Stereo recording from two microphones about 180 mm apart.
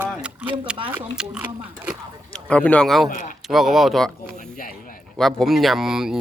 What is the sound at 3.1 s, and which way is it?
Speech, 45° left (ahead or behind).